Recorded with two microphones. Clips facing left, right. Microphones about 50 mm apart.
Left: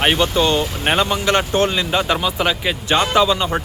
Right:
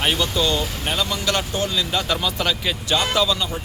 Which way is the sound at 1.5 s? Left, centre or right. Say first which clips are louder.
Left 6 dB; left.